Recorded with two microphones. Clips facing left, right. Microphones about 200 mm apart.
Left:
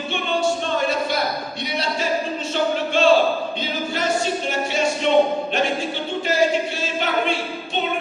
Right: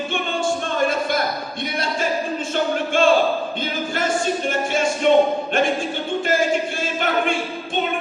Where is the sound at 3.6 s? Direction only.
50° right (ahead or behind).